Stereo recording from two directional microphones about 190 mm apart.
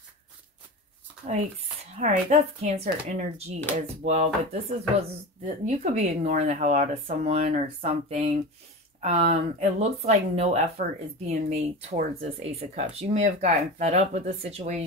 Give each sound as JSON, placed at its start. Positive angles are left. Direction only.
{"t": 2.0, "sound": "speech", "side_deg": -35}